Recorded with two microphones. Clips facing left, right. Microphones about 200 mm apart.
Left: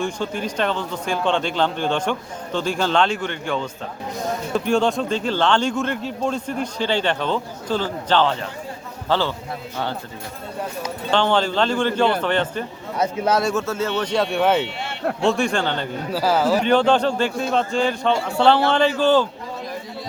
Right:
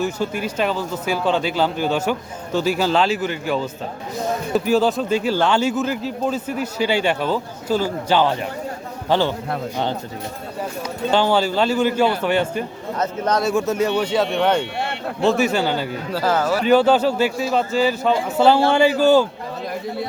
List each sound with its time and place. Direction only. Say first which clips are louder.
0.0 s a man's voice: right 2 dB; 5° right (ahead or behind)
11.1 s speech: right 1 dB; 10° right (ahead or behind)
13.0 s a man's voice: left 1 dB; 10° left (ahead or behind)
13.4 s a man's voice: right 3 dB; 10° right (ahead or behind)
16.1 s a man's voice: left 1 dB; 10° left (ahead or behind)
16.6 s a man's voice: right 2 dB; 5° right (ahead or behind)